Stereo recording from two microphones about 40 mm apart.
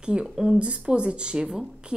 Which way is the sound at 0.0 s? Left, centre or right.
Right.